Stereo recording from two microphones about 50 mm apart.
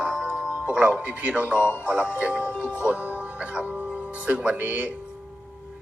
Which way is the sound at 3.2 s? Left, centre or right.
Right.